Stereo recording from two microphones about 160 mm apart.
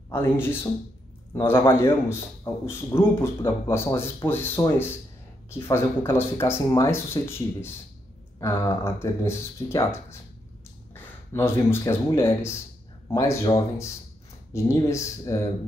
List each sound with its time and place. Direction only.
0.1 s a man's voice: 15° left (ahead or behind)
11.3 s a man's voice: 15° left (ahead or behind)
14.5 s a man's voice: 20° left (ahead or behind)